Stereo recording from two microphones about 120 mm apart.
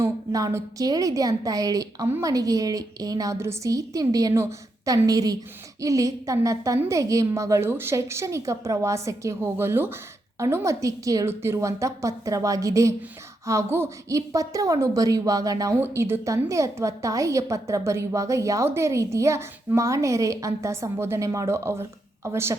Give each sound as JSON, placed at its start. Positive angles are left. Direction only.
{"t": 0.0, "sound": "a woman's voice", "side_deg": -25}